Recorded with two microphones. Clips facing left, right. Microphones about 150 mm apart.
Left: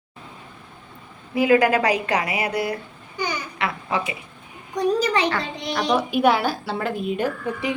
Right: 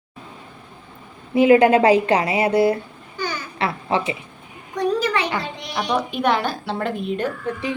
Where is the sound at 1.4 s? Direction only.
25° right (ahead or behind).